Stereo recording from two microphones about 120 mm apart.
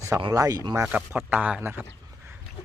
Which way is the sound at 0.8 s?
10° right (ahead or behind).